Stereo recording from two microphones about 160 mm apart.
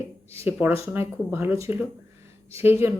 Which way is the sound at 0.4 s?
15° right (ahead or behind).